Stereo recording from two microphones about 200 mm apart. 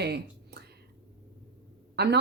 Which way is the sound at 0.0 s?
55° right (ahead or behind).